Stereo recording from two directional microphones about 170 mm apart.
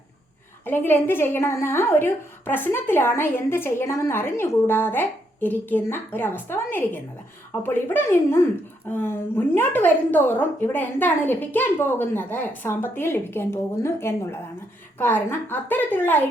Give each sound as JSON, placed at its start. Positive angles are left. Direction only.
{"t": 0.6, "sound": "a woman's voice", "side_deg": 10}